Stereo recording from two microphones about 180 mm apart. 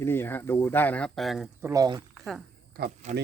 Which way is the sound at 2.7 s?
60° right (ahead or behind).